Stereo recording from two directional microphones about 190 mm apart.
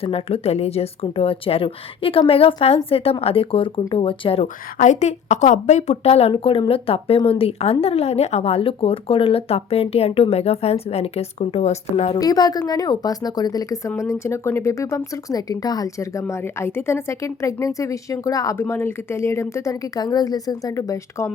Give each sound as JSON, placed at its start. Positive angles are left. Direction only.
{"t": 0.0, "sound": "a woman's voice", "side_deg": 30}
{"t": 12.2, "sound": "speech", "side_deg": 20}